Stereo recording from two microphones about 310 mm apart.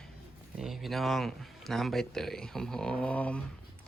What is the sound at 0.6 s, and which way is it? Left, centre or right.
Speech, centre.